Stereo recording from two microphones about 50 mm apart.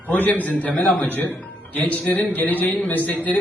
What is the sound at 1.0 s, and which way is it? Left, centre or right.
A man's voice, left.